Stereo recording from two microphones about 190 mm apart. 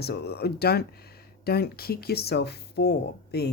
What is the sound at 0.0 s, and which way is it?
Speech, 55° left (ahead or behind).